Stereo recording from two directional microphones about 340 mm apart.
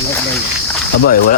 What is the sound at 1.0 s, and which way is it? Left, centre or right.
Speech, left.